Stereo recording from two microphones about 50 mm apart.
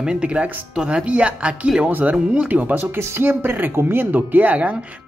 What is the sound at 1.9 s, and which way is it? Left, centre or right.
Speech, right.